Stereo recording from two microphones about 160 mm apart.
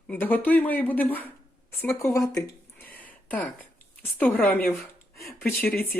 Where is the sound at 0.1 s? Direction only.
10° left (ahead or behind).